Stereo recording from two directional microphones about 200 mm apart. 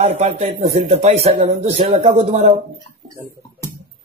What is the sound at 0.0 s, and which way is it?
A man's voice, 35° right (ahead or behind).